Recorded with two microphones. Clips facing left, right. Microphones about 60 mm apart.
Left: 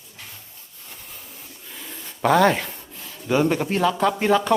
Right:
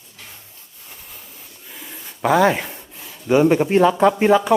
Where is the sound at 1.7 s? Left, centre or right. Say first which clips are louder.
Right 1 dB; centre; by 4.1 s right.